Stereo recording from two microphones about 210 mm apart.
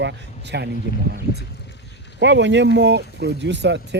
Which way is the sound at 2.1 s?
55° right (ahead or behind).